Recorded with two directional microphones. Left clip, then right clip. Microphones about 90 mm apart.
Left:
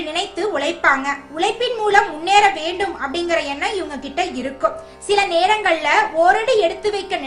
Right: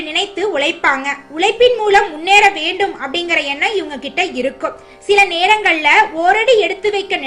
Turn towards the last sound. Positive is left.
turn(degrees=-15)  # may be behind; listen again after turning